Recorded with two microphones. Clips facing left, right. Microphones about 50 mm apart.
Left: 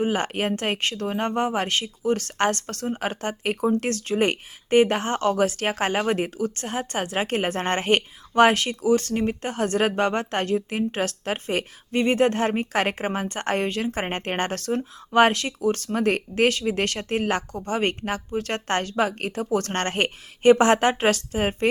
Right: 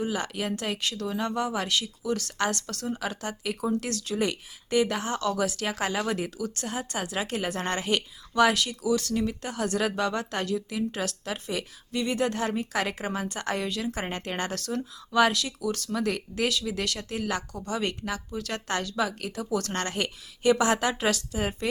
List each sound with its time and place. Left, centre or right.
0.0 s speech: left